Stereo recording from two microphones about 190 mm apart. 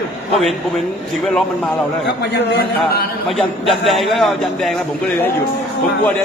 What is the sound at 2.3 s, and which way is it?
Speech, 55° left (ahead or behind).